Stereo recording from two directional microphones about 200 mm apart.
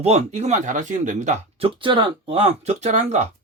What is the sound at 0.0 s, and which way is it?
Speech, 30° right (ahead or behind).